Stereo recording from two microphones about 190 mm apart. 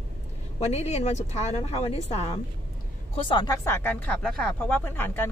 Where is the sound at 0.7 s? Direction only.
35° left (ahead or behind).